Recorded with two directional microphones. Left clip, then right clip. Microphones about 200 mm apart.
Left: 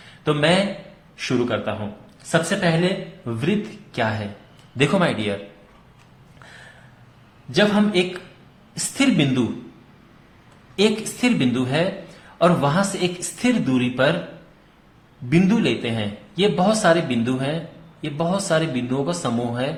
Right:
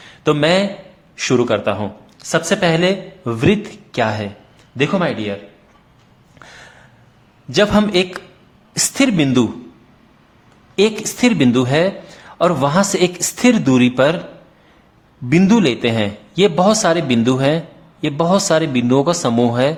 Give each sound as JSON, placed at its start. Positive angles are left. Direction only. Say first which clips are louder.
{"t": 0.3, "sound": "speech", "louder": "right 4 dB", "side_deg": -35}
{"t": 4.8, "sound": "a man's voice", "louder": "right 2 dB", "side_deg": -20}
{"t": 7.5, "sound": "speech", "louder": "right 5 dB", "side_deg": -45}
{"t": 10.8, "sound": "speech", "louder": "right 5 dB", "side_deg": -40}
{"t": 15.3, "sound": "speech", "louder": "right 6 dB", "side_deg": -40}